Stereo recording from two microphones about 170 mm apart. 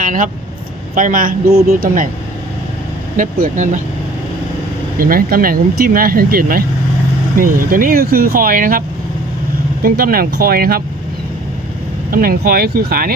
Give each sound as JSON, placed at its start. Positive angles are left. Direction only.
{"t": 0.0, "sound": "vehicle", "side_deg": -50}
{"t": 0.9, "sound": "speech", "side_deg": -50}
{"t": 3.2, "sound": "speech", "side_deg": -50}
{"t": 4.9, "sound": "speech", "side_deg": -60}
{"t": 9.8, "sound": "speech", "side_deg": -60}
{"t": 12.1, "sound": "speech", "side_deg": -60}